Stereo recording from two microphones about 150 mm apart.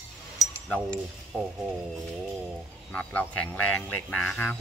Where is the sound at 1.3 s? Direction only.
10° left (ahead or behind).